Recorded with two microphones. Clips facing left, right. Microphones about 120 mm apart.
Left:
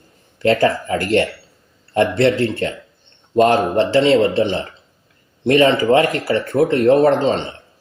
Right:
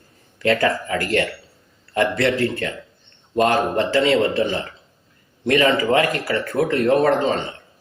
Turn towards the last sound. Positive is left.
turn(degrees=30)  # may be behind; listen again after turning